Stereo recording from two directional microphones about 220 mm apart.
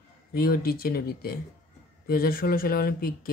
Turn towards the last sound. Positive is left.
turn(degrees=40)  # may be behind; listen again after turning